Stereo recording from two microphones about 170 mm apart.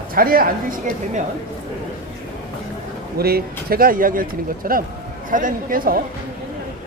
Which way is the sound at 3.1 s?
65° right (ahead or behind).